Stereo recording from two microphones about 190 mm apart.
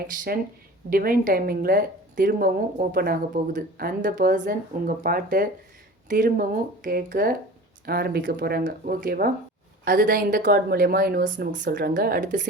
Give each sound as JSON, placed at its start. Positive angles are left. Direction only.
{"t": 0.9, "sound": "speech", "side_deg": -50}